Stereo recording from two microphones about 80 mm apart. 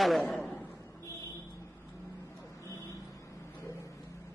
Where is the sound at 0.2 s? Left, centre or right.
Centre.